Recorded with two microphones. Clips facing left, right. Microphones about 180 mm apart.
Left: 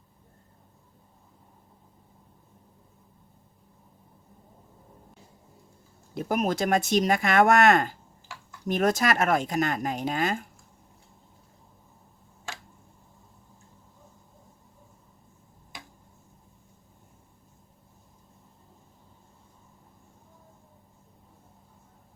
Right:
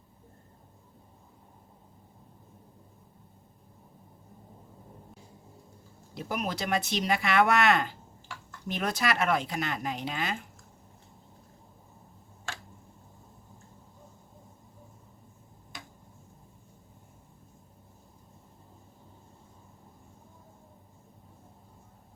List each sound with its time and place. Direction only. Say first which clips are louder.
6.1 s speech: left 7 dB; 50° left (ahead or behind)